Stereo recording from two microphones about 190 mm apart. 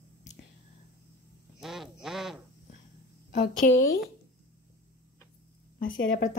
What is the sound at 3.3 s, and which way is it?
Speech, 45° left (ahead or behind).